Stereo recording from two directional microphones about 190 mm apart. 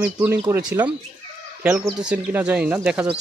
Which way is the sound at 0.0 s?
10° right (ahead or behind).